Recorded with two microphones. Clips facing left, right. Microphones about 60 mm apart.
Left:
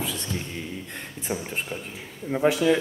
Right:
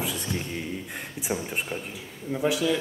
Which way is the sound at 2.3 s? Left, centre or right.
Left.